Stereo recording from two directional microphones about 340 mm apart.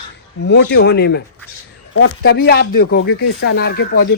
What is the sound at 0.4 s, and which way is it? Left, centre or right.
Speech, left.